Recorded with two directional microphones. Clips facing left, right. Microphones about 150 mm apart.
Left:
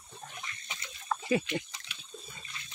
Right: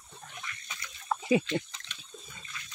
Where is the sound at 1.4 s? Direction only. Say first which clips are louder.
Right 3 dB; 10° left (ahead or behind).